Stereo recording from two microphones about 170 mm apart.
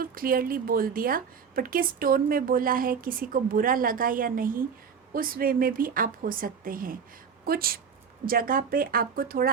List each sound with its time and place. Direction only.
0.0 s a woman's voice: 60° right (ahead or behind)